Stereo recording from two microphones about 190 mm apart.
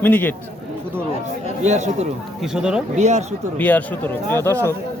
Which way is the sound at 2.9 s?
35° right (ahead or behind).